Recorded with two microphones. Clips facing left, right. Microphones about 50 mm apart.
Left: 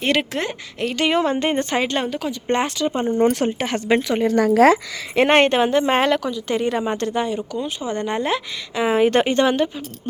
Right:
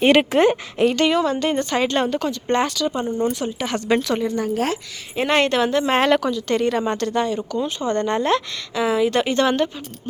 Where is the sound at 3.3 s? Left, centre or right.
Left.